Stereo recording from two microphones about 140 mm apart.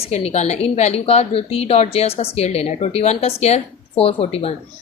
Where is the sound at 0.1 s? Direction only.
50° left (ahead or behind).